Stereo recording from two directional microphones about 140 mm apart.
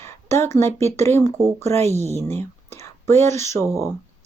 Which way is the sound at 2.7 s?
20° left (ahead or behind).